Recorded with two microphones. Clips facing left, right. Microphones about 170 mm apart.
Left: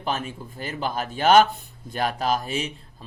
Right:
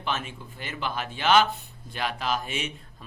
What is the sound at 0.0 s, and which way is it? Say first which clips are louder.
Speech: left 3 dB; 40° left (ahead or behind).